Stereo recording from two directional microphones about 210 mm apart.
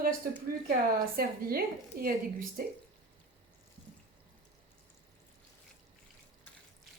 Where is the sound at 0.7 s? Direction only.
45° right (ahead or behind).